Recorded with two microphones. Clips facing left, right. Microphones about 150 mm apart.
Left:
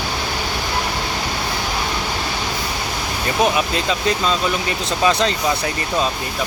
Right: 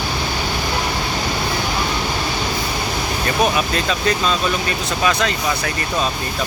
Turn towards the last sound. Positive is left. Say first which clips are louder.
# left 2 dB
turn(degrees=30)  # may be behind; listen again after turning